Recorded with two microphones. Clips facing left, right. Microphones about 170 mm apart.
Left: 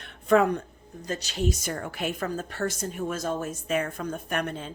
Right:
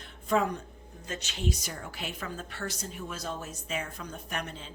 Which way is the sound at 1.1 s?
35° left (ahead or behind).